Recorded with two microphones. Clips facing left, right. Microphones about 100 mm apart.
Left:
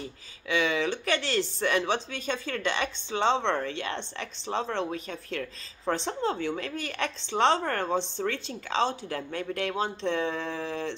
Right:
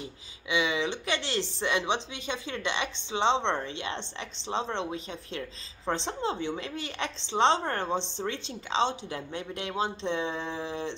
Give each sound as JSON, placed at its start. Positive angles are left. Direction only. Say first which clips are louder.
{"t": 0.0, "sound": "speech", "louder": "left 2 dB", "side_deg": -15}